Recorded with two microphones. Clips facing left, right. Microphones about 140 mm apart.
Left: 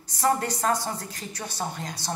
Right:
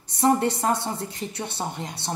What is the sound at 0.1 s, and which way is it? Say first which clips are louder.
A woman's voice: right 4 dB; 25° right (ahead or behind).